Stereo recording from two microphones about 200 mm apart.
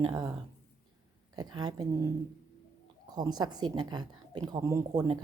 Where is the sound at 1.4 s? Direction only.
20° right (ahead or behind).